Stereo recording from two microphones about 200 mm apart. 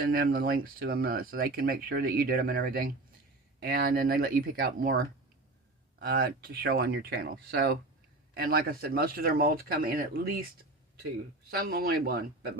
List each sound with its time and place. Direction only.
0.0 s speech: 50° right (ahead or behind)